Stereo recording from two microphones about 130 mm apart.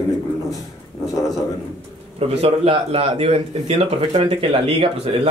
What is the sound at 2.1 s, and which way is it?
Speech, 50° right (ahead or behind).